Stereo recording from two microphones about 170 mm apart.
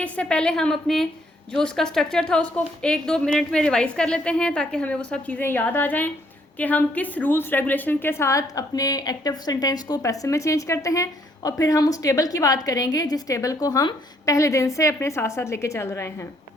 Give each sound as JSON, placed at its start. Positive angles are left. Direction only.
{"t": 0.0, "sound": "a woman's voice", "side_deg": 5}